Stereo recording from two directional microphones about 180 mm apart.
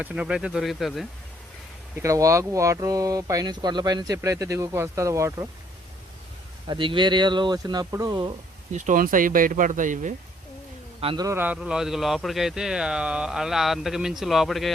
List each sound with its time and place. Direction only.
0.0 s speech: 5° right (ahead or behind)
2.0 s speech: 15° right (ahead or behind)
6.7 s speech: 25° right (ahead or behind)
8.7 s speech: 45° right (ahead or behind)
11.0 s speech: 30° right (ahead or behind)
11.3 s speech: 10° right (ahead or behind)